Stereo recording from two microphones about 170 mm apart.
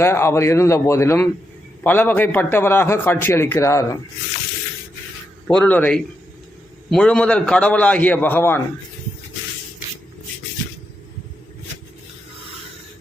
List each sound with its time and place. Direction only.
0.0 s a man's voice: 15° left (ahead or behind)
5.5 s a man's voice: 5° left (ahead or behind)